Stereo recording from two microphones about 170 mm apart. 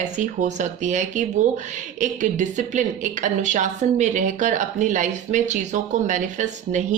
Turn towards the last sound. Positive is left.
turn(degrees=-45)  # may be behind; listen again after turning